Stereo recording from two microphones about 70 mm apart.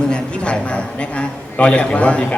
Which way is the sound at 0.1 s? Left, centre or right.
Centre.